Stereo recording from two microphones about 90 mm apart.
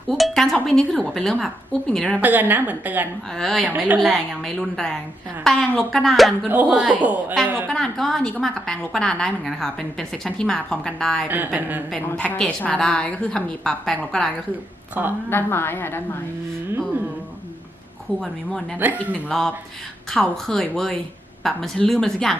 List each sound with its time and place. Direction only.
0.1 s speech: centre (ahead or behind)
2.1 s a woman's voice: 20° right (ahead or behind)
3.3 s a woman's voice: 5° left (ahead or behind)
6.5 s a man's voice: 15° right (ahead or behind)
7.7 s a woman's voice: 5° left (ahead or behind)
11.3 s a woman's voice: 20° right (ahead or behind)
12.1 s a woman's voice: 15° left (ahead or behind)
15.0 s a woman's voice: 20° right (ahead or behind)
15.3 s a woman's voice: 25° left (ahead or behind)
18.2 s speech: centre (ahead or behind)